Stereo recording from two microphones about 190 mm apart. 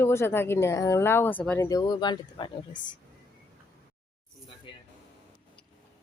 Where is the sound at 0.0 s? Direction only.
15° left (ahead or behind).